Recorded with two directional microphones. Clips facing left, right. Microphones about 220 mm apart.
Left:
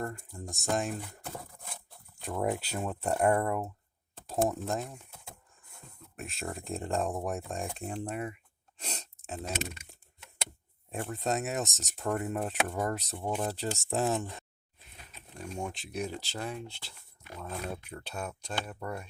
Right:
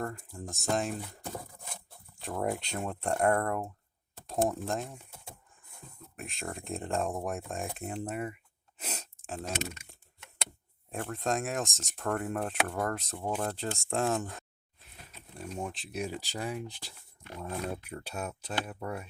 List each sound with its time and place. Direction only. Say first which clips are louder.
0.0 s speech: even; centre (ahead or behind)
2.1 s speech: left 1 dB; centre (ahead or behind)
6.1 s speech: left 1 dB; centre (ahead or behind)
8.8 s a sound: right 1 dB; 5° right (ahead or behind)
10.9 s speech: even; centre (ahead or behind)